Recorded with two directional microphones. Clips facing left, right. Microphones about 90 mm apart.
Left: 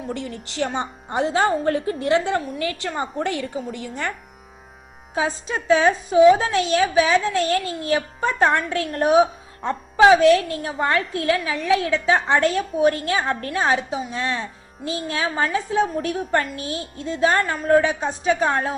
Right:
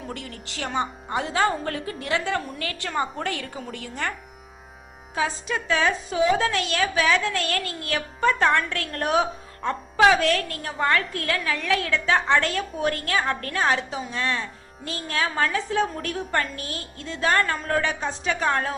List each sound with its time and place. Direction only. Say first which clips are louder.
0.1 s a woman's voice: left 6 dB; 25° left (ahead or behind)
5.1 s a woman's voice: left 2 dB; 25° left (ahead or behind)